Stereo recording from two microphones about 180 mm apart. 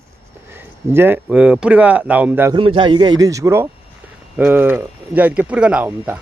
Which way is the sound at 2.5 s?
30° right (ahead or behind).